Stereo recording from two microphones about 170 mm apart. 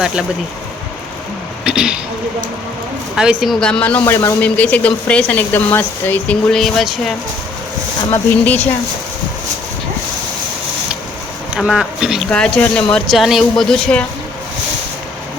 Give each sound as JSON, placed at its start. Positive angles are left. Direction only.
{"t": 1.6, "sound": "a sound", "side_deg": -5}
{"t": 3.2, "sound": "speech", "side_deg": -5}
{"t": 8.1, "sound": "speech", "side_deg": 10}
{"t": 11.5, "sound": "speech", "side_deg": -5}